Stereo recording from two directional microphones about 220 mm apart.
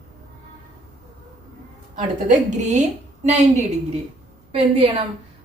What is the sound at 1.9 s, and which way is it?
Speech, 35° right (ahead or behind).